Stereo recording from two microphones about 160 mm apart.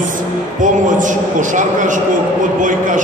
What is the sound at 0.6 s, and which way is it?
A man's voice, 55° right (ahead or behind).